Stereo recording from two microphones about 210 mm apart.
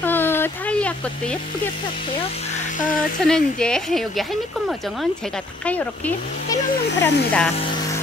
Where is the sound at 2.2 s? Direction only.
35° left (ahead or behind).